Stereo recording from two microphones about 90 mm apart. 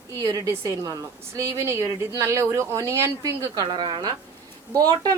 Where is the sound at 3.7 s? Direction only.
60° right (ahead or behind).